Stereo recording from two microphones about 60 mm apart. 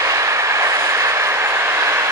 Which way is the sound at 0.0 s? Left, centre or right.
Right.